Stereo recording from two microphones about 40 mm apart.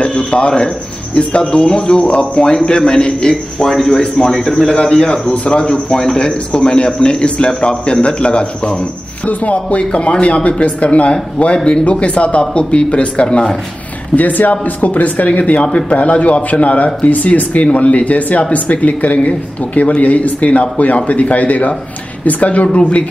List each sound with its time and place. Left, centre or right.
0.3 s a man's voice: left
3.7 s speech: centre
5.3 s a man's voice: left
9.2 s a man's voice: left
14.1 s speech: left